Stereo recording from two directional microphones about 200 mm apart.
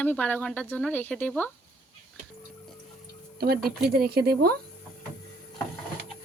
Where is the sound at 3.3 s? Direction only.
50° right (ahead or behind).